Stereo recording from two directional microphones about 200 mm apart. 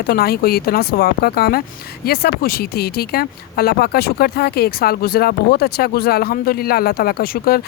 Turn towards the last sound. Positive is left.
turn(degrees=50)  # may be behind; listen again after turning